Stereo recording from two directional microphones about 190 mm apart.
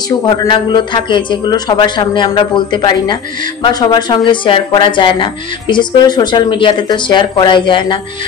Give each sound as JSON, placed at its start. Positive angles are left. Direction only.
{"t": 0.2, "sound": "a woman's voice", "side_deg": 25}